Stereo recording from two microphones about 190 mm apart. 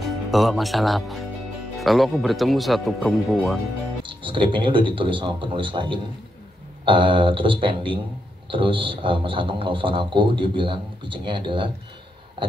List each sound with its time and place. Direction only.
0.3 s speech: centre (ahead or behind)
4.0 s a man's voice: 25° right (ahead or behind)